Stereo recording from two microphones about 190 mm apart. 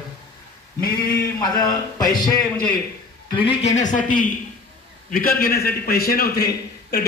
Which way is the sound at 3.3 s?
30° left (ahead or behind).